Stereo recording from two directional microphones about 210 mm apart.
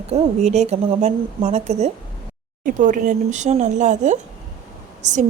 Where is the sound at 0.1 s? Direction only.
30° right (ahead or behind).